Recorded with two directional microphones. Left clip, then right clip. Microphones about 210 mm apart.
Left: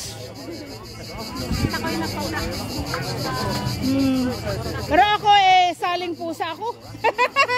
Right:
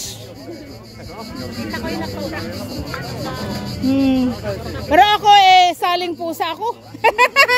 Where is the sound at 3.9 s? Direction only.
25° right (ahead or behind).